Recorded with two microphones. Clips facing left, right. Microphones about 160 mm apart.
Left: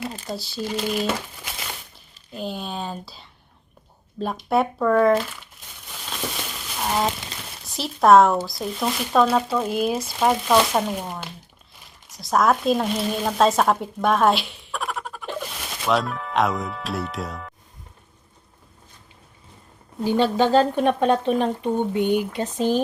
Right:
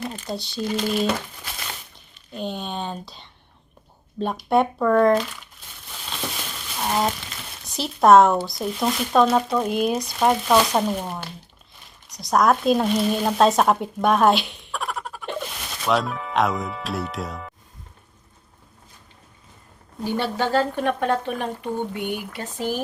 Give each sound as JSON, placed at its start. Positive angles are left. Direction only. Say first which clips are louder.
{"t": 0.3, "sound": "speech", "louder": "right 3 dB", "side_deg": 5}
{"t": 4.4, "sound": "speech", "louder": "right 1 dB", "side_deg": 0}
{"t": 6.7, "sound": "a sound", "louder": "even", "side_deg": 0}
{"t": 7.6, "sound": "speech", "louder": "right 1 dB", "side_deg": 0}
{"t": 20.1, "sound": "speech", "louder": "left 5 dB", "side_deg": 15}